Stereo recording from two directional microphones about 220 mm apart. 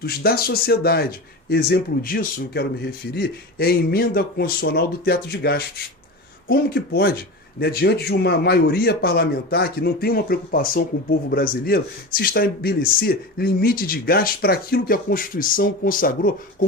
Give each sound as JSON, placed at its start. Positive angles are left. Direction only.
{"t": 0.0, "sound": "speech", "side_deg": 45}